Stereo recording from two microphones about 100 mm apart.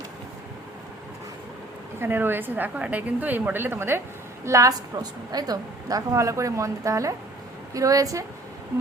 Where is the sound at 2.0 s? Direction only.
20° right (ahead or behind).